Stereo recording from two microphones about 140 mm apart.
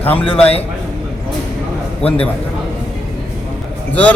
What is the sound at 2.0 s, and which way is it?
Speech, 45° left (ahead or behind).